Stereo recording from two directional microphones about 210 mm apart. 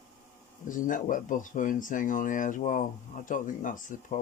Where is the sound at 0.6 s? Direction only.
40° left (ahead or behind).